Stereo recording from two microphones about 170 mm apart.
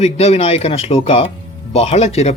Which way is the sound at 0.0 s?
40° left (ahead or behind).